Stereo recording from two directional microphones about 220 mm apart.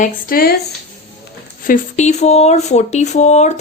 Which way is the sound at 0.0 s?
40° left (ahead or behind).